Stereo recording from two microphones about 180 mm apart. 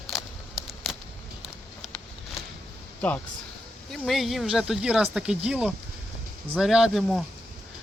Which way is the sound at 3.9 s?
Centre (ahead or behind).